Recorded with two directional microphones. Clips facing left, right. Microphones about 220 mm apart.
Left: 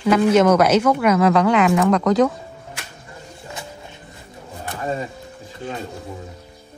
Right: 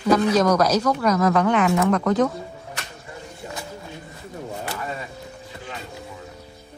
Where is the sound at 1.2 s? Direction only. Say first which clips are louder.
Left 3 dB; 80° left.